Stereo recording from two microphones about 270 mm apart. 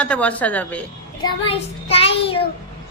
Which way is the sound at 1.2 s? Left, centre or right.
Left.